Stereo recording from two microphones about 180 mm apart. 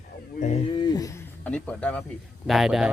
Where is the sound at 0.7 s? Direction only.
25° left (ahead or behind).